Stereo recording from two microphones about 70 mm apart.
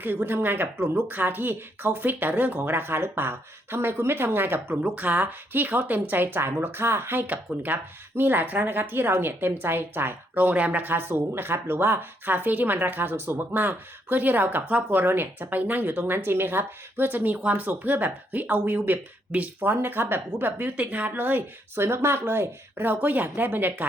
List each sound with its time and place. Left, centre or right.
0.0 s speech: right
4.8 s speech: right